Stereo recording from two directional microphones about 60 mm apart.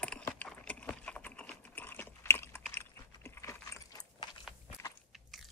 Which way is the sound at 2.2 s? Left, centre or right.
Left.